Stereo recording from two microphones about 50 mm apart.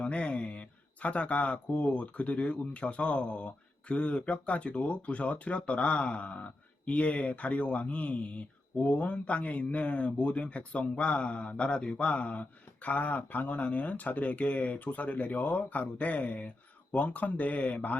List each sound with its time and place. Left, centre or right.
0.0 s speech: left